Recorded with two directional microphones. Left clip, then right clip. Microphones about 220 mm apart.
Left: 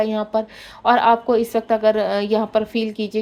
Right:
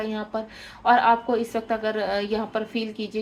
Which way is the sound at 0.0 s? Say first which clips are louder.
Left 9 dB; 40° left (ahead or behind).